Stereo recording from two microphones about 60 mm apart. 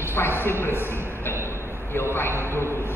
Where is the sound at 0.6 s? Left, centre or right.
Left.